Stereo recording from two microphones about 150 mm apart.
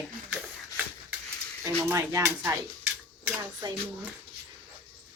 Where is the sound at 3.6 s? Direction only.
25° right (ahead or behind).